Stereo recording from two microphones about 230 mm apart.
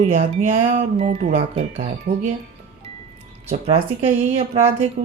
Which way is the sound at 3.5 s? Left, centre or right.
Right.